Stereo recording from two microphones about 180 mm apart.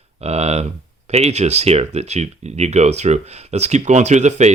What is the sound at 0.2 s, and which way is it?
Speech, 35° right (ahead or behind).